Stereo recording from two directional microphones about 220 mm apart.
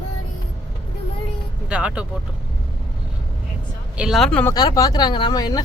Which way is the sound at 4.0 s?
Centre (ahead or behind).